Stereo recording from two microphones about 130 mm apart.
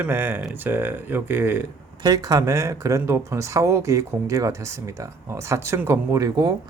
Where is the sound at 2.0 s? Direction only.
30° right (ahead or behind).